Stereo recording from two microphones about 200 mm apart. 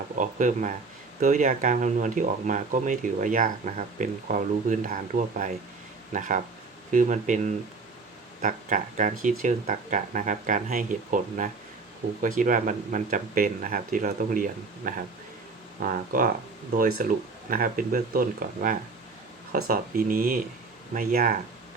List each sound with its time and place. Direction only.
0.2 s speech: 40° right (ahead or behind)